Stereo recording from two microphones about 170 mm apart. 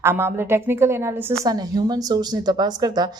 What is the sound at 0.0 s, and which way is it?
A woman's voice, 15° right (ahead or behind).